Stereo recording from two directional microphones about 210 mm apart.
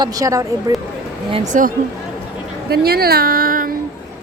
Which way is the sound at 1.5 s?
35° right (ahead or behind).